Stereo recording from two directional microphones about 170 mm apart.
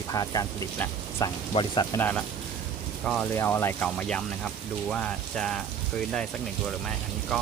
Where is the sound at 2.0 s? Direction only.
10° left (ahead or behind).